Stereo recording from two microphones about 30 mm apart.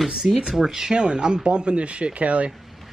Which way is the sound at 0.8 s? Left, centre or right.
Right.